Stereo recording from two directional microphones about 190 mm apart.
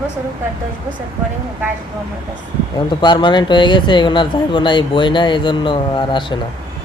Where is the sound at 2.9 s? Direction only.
25° left (ahead or behind).